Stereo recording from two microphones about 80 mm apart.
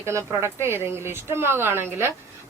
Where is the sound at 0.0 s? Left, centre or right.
Right.